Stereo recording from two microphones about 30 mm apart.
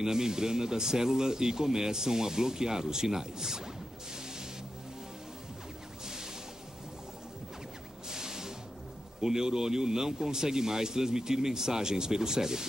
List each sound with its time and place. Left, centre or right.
0.0 s speech: centre
8.1 s music: centre
9.2 s speech: centre